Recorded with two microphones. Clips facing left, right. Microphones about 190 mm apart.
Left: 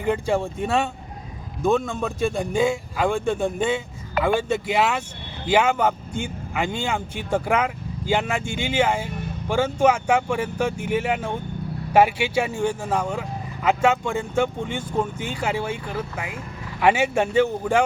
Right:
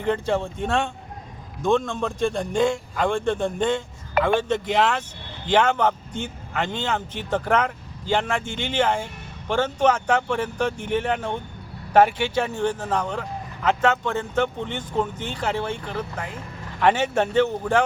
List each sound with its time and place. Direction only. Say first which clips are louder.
0.0 s speech: left 1 dB; 10° left (ahead or behind)